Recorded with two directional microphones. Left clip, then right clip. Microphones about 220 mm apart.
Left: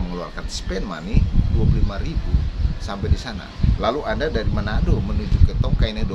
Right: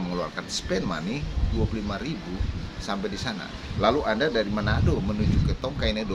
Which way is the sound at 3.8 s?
5° left (ahead or behind).